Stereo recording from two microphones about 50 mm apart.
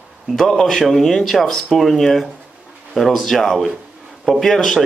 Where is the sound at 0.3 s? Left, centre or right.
Centre.